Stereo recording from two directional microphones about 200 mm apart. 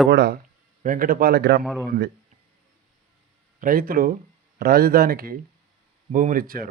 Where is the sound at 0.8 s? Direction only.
45° right (ahead or behind).